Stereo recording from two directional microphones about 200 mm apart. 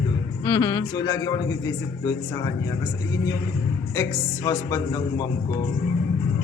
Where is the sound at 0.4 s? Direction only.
20° left (ahead or behind).